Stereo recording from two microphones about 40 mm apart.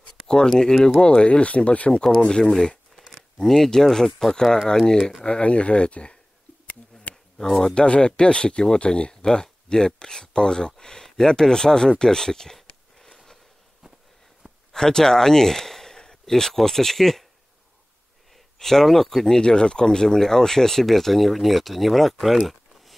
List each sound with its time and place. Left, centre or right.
0.3 s speech: centre
2.2 s speech: centre
5.2 s speech: left
7.3 s speech: centre
13.0 s a sound: centre
14.7 s a sound: centre
16.3 s speech: centre
18.6 s speech: centre
19.4 s speech: left; by 22.4 s centre
22.5 s a sound: centre